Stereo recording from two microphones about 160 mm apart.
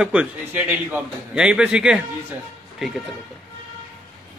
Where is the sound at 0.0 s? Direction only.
5° right (ahead or behind).